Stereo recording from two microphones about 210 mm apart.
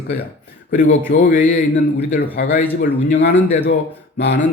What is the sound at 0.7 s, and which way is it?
A man's voice, 40° left (ahead or behind).